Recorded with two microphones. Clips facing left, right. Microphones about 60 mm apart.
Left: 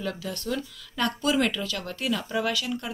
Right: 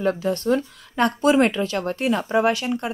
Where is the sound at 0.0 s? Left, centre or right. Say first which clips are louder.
Right 10 dB; right.